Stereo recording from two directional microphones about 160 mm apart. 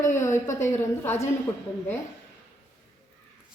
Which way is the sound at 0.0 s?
15° left (ahead or behind).